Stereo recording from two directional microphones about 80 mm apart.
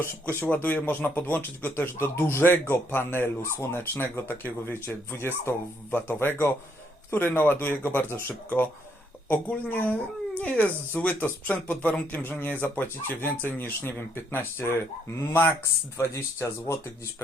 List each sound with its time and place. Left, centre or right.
0.0 s speech: left
16.1 s speech: left